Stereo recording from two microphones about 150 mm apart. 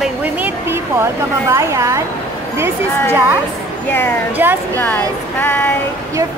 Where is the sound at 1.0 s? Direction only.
20° right (ahead or behind).